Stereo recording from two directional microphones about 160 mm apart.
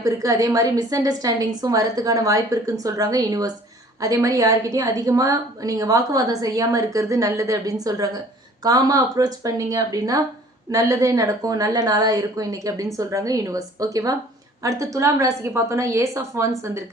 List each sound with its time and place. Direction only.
0.0 s a woman's voice: 20° right (ahead or behind)